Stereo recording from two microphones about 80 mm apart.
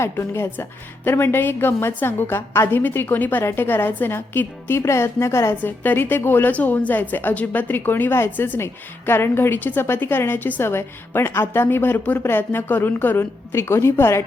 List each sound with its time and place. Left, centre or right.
0.0 s a woman's voice: left